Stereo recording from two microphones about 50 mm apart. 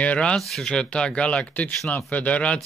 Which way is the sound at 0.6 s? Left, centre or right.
Centre.